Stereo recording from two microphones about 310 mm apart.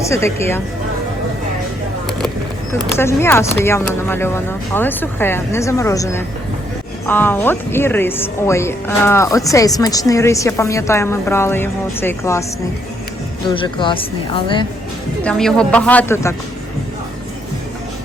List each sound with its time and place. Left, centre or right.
0.3 s speech: centre
2.7 s speech: centre
13.5 s speech: centre
15.2 s speech: centre